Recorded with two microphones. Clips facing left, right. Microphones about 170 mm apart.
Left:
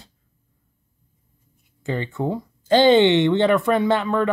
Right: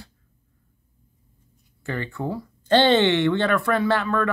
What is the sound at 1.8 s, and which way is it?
Speech, 20° left (ahead or behind).